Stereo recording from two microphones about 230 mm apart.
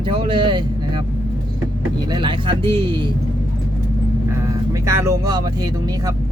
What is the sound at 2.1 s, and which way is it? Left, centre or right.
Speech, centre.